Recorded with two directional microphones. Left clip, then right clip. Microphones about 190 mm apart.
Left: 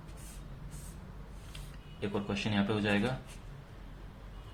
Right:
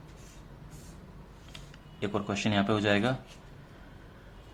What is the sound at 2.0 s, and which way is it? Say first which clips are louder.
A man's voice: right 4 dB; 40° right (ahead or behind).